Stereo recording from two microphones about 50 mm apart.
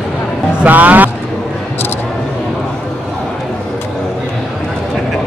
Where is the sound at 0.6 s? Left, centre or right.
Right.